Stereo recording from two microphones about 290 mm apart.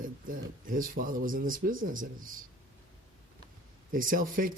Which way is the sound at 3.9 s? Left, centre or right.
Right.